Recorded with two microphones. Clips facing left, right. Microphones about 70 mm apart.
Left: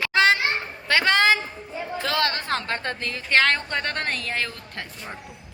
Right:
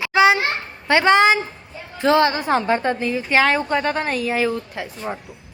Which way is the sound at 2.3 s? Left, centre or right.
Centre.